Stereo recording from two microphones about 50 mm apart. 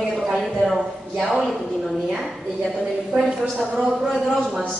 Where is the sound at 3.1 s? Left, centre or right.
Right.